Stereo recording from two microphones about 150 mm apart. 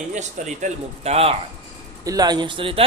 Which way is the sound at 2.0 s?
25° right (ahead or behind).